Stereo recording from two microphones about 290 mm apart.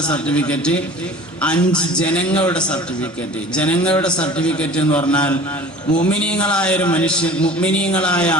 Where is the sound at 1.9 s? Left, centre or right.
Centre.